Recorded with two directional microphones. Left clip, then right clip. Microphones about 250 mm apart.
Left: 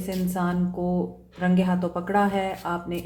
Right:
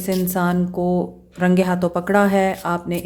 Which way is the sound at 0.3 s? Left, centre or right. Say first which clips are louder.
Right 7 dB; right.